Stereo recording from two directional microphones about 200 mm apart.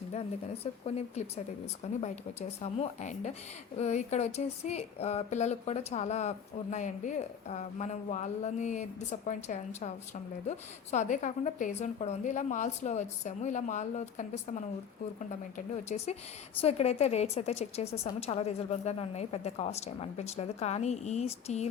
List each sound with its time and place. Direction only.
0.1 s speech: 30° left (ahead or behind)
10.9 s speech: 35° left (ahead or behind)